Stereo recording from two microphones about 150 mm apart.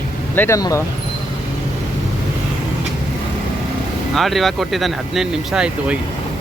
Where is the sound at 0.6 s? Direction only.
25° left (ahead or behind).